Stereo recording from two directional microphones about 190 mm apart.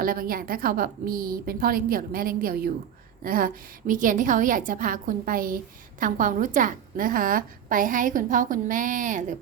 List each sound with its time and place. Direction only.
0.0 s a woman's voice: 50° right (ahead or behind)